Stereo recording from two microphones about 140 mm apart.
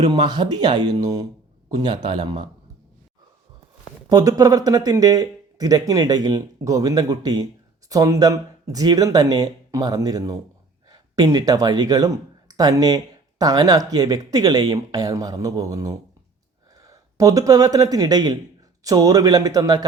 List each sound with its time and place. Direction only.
0.0 s speech: 30° right (ahead or behind)
4.1 s speech: 25° right (ahead or behind)